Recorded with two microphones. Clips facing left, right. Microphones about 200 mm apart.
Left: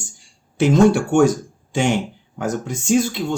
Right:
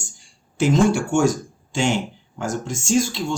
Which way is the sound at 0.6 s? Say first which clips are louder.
Left 3 dB; 60° left (ahead or behind).